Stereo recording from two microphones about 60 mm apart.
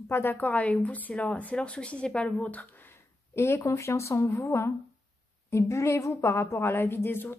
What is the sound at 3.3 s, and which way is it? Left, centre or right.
A woman's voice, left.